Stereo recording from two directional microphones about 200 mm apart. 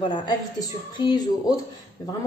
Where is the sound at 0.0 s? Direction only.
20° left (ahead or behind).